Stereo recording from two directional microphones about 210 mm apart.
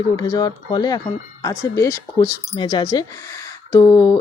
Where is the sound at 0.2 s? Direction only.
20° left (ahead or behind).